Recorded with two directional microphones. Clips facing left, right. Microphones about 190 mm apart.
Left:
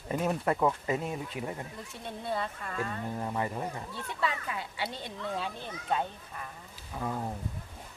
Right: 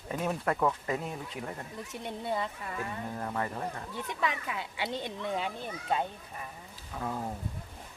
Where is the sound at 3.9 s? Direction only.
15° right (ahead or behind).